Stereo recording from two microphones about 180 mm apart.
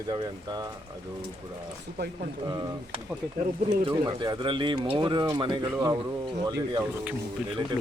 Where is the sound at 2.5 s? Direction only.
25° right (ahead or behind).